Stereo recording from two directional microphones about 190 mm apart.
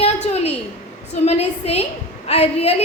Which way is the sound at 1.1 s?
35° left (ahead or behind).